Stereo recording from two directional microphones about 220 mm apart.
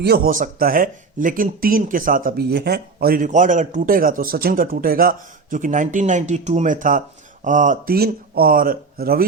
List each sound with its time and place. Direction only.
0.0 s speech: 40° right (ahead or behind)